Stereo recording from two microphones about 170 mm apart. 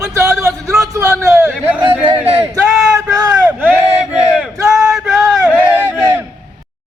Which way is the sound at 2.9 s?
20° right (ahead or behind).